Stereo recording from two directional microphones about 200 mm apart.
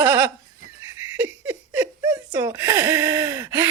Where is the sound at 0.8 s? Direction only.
10° right (ahead or behind).